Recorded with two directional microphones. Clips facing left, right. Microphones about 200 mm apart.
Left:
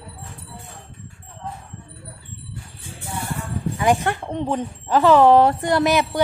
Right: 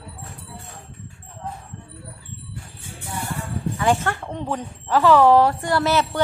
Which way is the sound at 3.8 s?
15° left (ahead or behind).